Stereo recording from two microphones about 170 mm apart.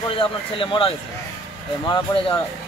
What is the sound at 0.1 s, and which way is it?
Speech, 30° left (ahead or behind).